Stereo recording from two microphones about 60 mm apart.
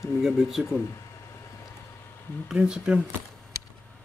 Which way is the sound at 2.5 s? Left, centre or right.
Centre.